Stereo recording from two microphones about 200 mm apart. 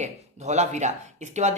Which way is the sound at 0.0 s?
35° right (ahead or behind).